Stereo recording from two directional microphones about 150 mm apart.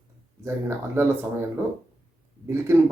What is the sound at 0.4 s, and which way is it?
Speech, 15° right (ahead or behind).